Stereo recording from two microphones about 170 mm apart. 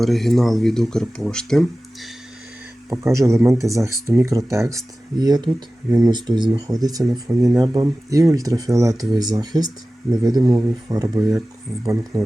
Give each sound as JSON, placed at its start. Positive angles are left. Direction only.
{"t": 0.0, "sound": "speech", "side_deg": 0}
{"t": 2.9, "sound": "speech", "side_deg": -15}